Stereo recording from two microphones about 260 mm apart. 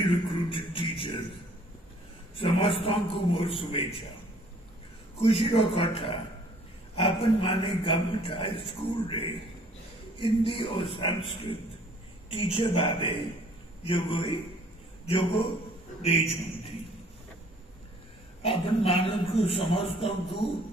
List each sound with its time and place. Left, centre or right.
0.0 s speech: centre
2.3 s a man's voice: left
5.2 s a man's voice: left
10.2 s a man's voice: left
16.0 s a man's voice: left
18.4 s a man's voice: left